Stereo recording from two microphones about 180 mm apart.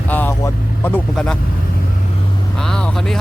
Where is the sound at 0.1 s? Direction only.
10° left (ahead or behind).